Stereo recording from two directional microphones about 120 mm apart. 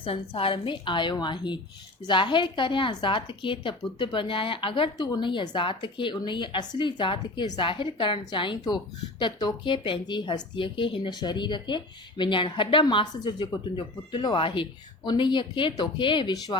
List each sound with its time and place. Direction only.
0.0 s speech: 50° left (ahead or behind)